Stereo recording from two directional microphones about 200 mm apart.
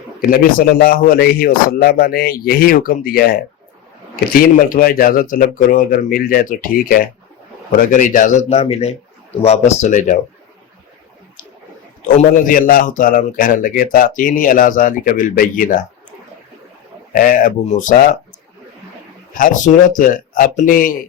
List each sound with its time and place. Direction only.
0.2 s a man's voice: 45° left (ahead or behind)
4.4 s a man's voice: 45° left (ahead or behind)
12.0 s a man's voice: 40° left (ahead or behind)
17.1 s a man's voice: 45° left (ahead or behind)
19.4 s a man's voice: 40° left (ahead or behind)